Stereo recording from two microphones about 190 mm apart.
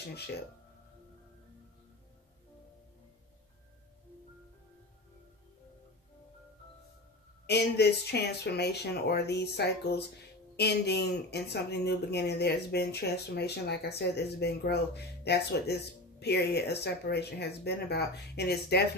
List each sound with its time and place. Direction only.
0.0 s speech: 60° left (ahead or behind)
7.4 s speech: 60° left (ahead or behind)